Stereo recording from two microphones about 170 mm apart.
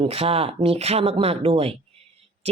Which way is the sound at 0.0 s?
35° right (ahead or behind).